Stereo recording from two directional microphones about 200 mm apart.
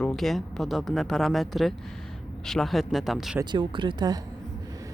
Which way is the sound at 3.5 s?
25° right (ahead or behind).